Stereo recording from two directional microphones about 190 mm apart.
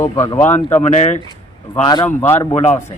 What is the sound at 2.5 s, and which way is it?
Speech, 35° left (ahead or behind).